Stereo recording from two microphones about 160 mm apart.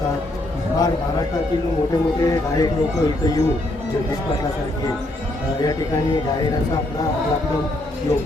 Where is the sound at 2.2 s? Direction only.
20° left (ahead or behind).